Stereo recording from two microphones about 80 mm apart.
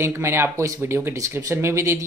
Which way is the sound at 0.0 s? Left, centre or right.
Right.